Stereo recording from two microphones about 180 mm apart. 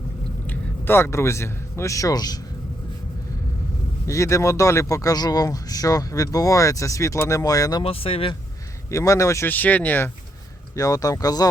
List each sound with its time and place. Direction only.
0.4 s a man's voice: 10° left (ahead or behind)
4.0 s speech: 15° left (ahead or behind)
8.9 s speech: 15° left (ahead or behind)